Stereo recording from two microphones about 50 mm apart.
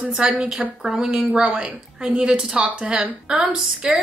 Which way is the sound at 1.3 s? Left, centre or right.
Centre.